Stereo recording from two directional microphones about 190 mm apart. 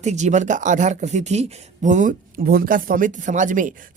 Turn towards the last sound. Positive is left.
turn(degrees=-45)  # may be behind; listen again after turning